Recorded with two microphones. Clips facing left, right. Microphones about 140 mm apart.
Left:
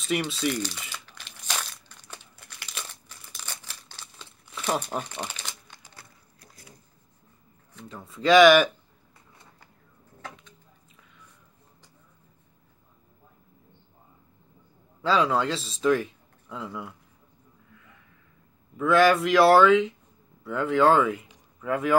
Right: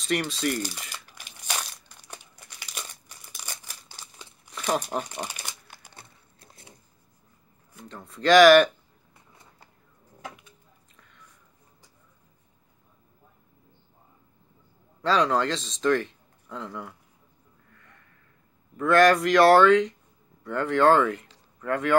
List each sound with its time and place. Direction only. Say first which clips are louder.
0.1 s speech: even; 5° left (ahead or behind)
0.5 s speech: right 1 dB; 10° right (ahead or behind)
0.8 s crumpling: left 1 dB; 10° right (ahead or behind)
5.9 s a sound: right 1 dB; 25° right (ahead or behind)
7.9 s speech: even; 5° left (ahead or behind)
10.2 s a sound: right 1 dB; 10° right (ahead or behind)
15.0 s speech: even; 5° left (ahead or behind)
17.7 s a sound: even; 5° left (ahead or behind)
18.8 s speech: right 1 dB; centre (ahead or behind)